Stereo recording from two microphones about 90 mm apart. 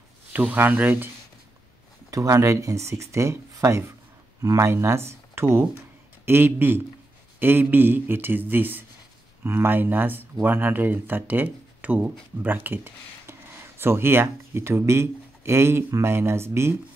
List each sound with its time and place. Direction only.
0.3 s speech: 20° right (ahead or behind)
2.0 s speech: 40° right (ahead or behind)